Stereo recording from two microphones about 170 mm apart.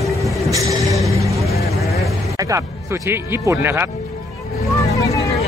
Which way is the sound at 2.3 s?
15° right (ahead or behind).